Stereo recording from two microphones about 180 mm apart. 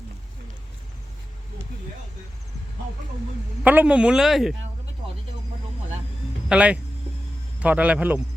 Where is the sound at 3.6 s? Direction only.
5° right (ahead or behind).